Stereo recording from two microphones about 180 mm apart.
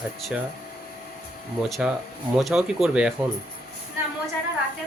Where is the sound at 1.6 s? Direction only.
Centre (ahead or behind).